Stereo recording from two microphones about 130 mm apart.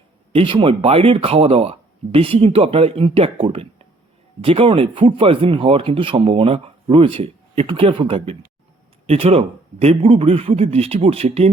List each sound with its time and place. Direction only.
0.3 s speech: 40° right (ahead or behind)